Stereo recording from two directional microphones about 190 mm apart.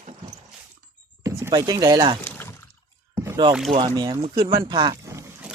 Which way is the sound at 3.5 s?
Centre (ahead or behind).